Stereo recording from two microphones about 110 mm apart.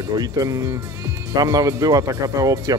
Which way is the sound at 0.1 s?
35° right (ahead or behind).